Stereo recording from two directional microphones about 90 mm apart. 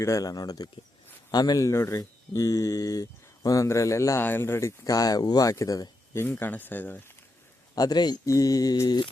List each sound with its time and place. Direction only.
0.0 s mantra: 40° left (ahead or behind)
1.3 s speech: 45° left (ahead or behind)
4.2 s speech: 25° left (ahead or behind); by 5.9 s 40° left (ahead or behind)
6.1 s speech: 25° left (ahead or behind)
7.8 s mantra: 50° left (ahead or behind)
8.2 s mantra: 40° left (ahead or behind)